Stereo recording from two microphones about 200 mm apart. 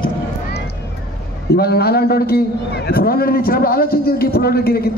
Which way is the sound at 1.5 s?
50° left (ahead or behind).